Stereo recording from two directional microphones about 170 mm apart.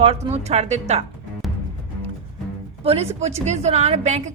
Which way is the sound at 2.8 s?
40° right (ahead or behind).